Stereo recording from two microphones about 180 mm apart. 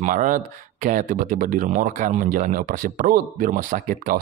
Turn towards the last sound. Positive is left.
turn(degrees=-50)  # may be behind; listen again after turning